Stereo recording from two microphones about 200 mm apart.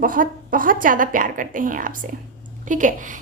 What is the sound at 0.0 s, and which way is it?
A woman's voice, 45° right (ahead or behind).